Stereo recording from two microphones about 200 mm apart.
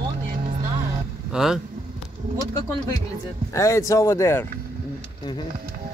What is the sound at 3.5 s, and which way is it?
Speech, 15° left (ahead or behind).